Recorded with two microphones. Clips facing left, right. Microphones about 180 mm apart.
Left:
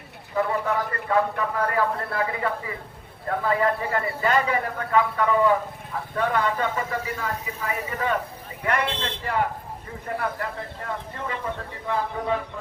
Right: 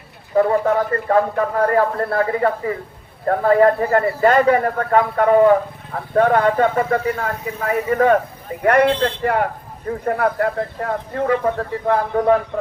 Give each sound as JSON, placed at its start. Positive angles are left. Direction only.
{"t": 0.3, "sound": "a man's voice", "side_deg": -50}